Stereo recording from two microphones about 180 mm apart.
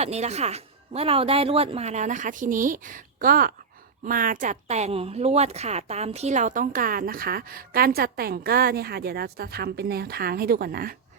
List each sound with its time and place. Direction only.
0.0 s a woman's voice: 35° right (ahead or behind); by 10.9 s 55° right (ahead or behind)